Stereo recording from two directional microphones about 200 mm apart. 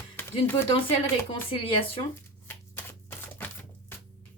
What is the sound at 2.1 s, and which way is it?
Typewriter, 10° left (ahead or behind).